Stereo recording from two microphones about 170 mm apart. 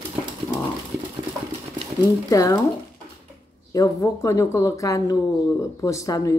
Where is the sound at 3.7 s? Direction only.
20° left (ahead or behind).